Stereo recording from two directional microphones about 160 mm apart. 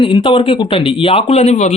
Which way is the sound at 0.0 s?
30° left (ahead or behind).